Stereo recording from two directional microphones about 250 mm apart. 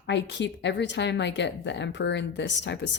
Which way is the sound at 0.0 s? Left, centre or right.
Left.